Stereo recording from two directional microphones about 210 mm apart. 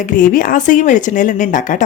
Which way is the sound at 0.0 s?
40° left (ahead or behind).